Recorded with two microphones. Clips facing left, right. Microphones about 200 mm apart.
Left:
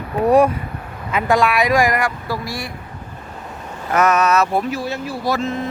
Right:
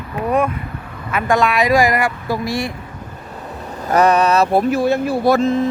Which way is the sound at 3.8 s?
35° right (ahead or behind).